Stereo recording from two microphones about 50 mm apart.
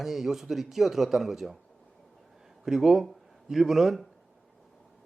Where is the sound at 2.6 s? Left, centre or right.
Centre.